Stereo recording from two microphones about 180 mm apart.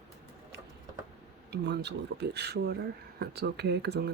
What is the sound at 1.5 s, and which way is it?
Speech, 70° right (ahead or behind).